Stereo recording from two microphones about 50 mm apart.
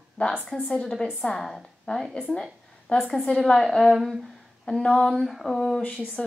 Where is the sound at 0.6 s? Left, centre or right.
Centre.